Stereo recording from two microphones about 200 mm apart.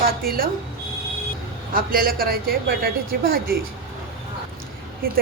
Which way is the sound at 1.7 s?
45° right (ahead or behind).